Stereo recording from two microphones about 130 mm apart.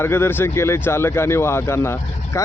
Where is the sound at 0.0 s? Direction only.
15° left (ahead or behind).